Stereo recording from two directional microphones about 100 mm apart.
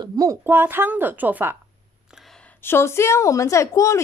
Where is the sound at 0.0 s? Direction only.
40° right (ahead or behind).